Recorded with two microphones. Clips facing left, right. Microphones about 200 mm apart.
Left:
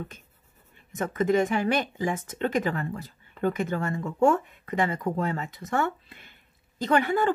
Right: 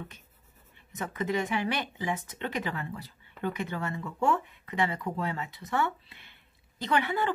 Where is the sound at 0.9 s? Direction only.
45° left (ahead or behind).